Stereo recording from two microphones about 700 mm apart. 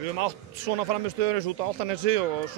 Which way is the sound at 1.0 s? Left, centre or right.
Right.